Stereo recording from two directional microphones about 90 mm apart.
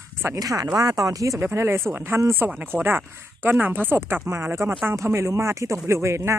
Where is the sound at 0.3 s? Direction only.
40° right (ahead or behind).